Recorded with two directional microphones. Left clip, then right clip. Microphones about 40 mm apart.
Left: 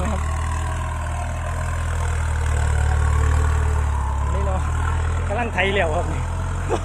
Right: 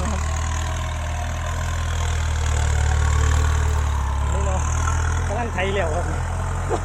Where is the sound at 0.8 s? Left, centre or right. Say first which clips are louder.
Left 1 dB; centre.